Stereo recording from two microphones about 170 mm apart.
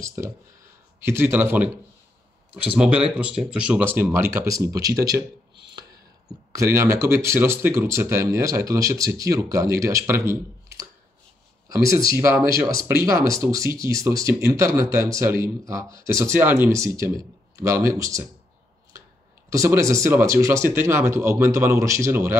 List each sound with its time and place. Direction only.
0.0 s speech: 15° right (ahead or behind)
12.1 s speech: 15° right (ahead or behind)
19.5 s speech: 20° right (ahead or behind)